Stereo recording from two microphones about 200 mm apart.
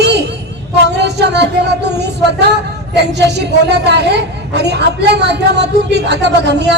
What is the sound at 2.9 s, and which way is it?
A woman's voice, 60° right (ahead or behind).